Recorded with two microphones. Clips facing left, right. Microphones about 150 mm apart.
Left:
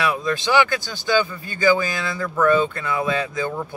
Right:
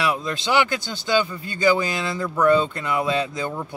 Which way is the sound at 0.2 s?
20° right (ahead or behind).